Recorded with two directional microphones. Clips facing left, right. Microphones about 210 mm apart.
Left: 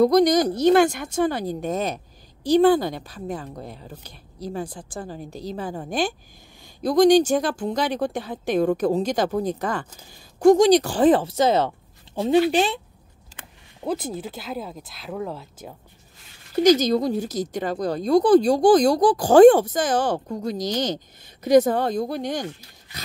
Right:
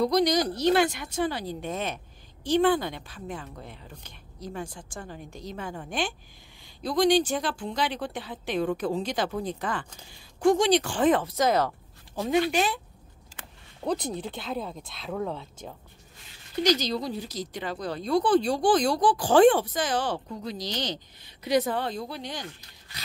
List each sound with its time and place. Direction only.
0.0 s a woman's voice: 50° left (ahead or behind); by 12.8 s 30° left (ahead or behind)
13.8 s speech: 5° left (ahead or behind)
16.6 s speech: 50° left (ahead or behind)